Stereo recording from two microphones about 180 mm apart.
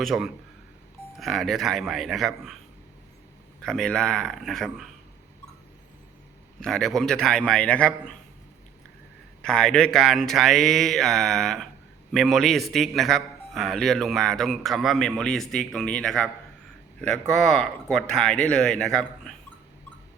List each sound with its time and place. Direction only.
0.0 s a man's voice: centre (ahead or behind)
3.6 s a man's voice: 5° left (ahead or behind)
6.6 s a man's voice: centre (ahead or behind)
9.4 s a man's voice: 5° left (ahead or behind)